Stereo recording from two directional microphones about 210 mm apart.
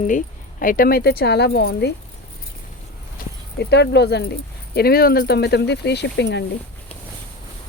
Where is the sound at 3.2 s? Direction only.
45° left (ahead or behind).